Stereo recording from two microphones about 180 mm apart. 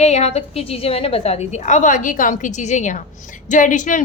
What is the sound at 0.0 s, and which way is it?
A woman's voice, 35° left (ahead or behind).